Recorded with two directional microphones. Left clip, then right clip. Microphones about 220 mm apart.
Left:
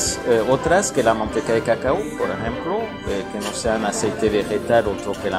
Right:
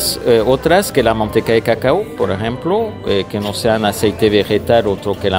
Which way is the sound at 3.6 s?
45° right (ahead or behind).